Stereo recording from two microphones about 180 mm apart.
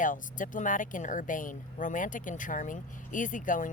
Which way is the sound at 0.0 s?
45° left (ahead or behind).